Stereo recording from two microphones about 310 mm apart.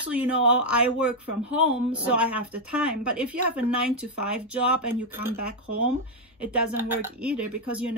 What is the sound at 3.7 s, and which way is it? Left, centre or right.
Speech, right.